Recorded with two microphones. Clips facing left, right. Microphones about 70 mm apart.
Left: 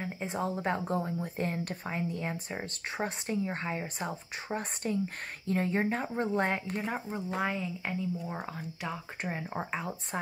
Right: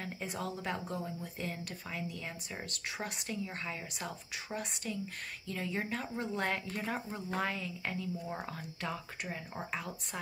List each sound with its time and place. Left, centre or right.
0.0 s speech: left
6.4 s speech: left
9.2 s speech: left